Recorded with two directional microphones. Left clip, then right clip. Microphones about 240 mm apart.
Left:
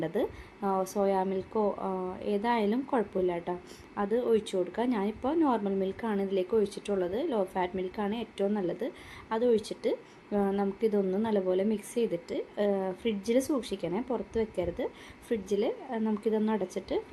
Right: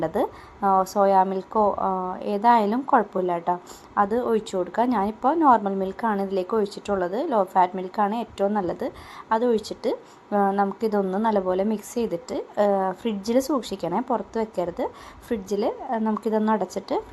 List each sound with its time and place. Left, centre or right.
0.1 s a woman's voice: centre